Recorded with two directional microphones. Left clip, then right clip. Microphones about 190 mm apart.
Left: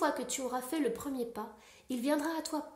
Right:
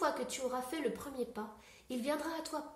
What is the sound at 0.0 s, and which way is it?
A woman's voice, 45° left (ahead or behind).